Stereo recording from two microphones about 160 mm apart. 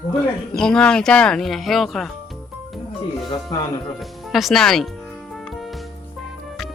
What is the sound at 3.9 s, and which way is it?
Speech, centre (ahead or behind).